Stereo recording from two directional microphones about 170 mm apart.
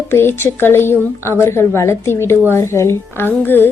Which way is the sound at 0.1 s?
15° left (ahead or behind).